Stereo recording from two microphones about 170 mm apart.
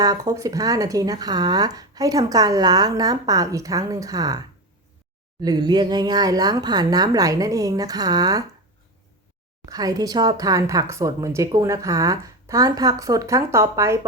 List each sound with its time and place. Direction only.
0.0 s speech: 20° right (ahead or behind)
9.6 s speech: 20° right (ahead or behind)